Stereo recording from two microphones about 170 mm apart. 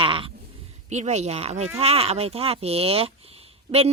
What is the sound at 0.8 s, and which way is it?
Speech, 40° right (ahead or behind).